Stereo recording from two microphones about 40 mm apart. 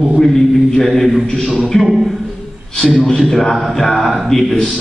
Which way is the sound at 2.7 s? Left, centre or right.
Centre.